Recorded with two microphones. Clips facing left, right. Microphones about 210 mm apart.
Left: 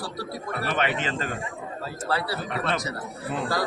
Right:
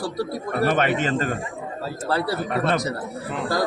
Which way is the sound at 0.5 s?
45° right (ahead or behind).